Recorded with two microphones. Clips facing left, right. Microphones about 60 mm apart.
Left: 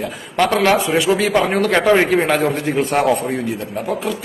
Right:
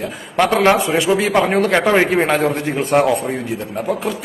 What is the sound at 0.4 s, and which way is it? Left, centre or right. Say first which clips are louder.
A man's voice: right 1 dB; right.